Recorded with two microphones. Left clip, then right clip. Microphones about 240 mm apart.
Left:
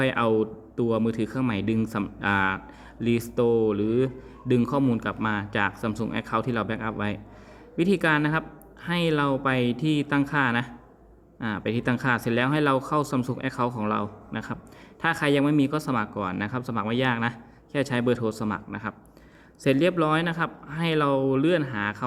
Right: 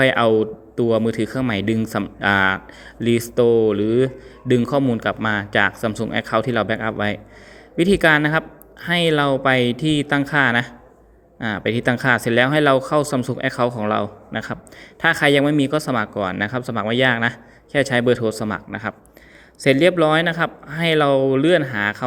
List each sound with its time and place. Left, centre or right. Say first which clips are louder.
0.0 s a man's voice: right 8 dB; centre